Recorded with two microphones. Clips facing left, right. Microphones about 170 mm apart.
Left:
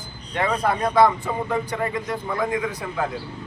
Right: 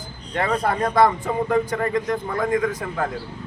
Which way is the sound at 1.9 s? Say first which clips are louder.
Right 4 dB; 45° right (ahead or behind).